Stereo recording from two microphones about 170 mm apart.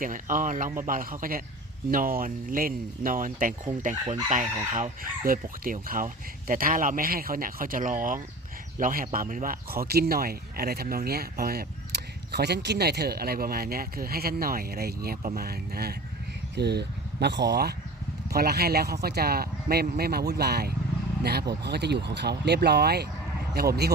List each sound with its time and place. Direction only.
0.0 s chicken: 50° right (ahead or behind)
8.8 s speech: 55° right (ahead or behind)
16.6 s speech: 75° right (ahead or behind)